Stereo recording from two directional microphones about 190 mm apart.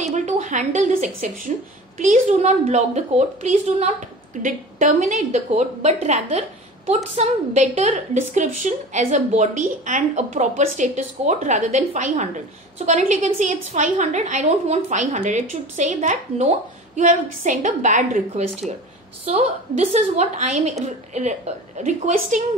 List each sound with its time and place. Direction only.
0.0 s a woman's voice: 40° right (ahead or behind)